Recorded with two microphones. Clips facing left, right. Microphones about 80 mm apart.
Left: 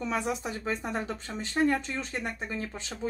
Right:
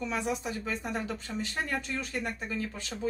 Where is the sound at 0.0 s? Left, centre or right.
Left.